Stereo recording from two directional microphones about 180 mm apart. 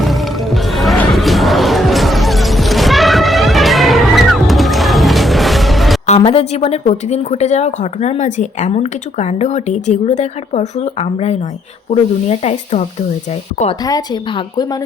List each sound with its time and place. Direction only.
0.0 s music: centre (ahead or behind)
6.1 s a woman's voice: 35° left (ahead or behind)
13.8 s a woman's voice: 20° left (ahead or behind)